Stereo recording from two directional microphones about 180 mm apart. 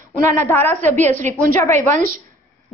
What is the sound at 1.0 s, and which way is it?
A woman's voice, 45° right (ahead or behind).